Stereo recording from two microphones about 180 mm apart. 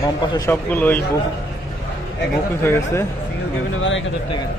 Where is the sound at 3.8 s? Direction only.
90° left.